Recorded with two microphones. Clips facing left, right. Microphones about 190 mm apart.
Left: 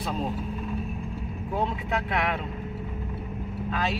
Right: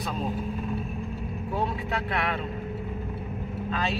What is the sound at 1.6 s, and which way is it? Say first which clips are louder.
Speech: left 2 dB; 15° left (ahead or behind).